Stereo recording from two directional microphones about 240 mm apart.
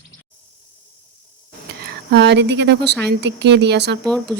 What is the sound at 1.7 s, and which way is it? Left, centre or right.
Speech, right.